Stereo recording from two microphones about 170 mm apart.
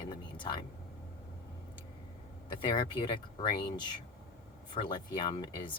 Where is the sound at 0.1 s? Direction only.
25° left (ahead or behind).